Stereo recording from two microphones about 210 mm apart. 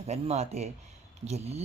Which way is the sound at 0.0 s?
30° right (ahead or behind).